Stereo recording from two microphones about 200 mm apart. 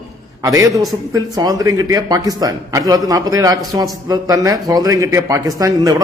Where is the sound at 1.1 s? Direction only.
15° right (ahead or behind).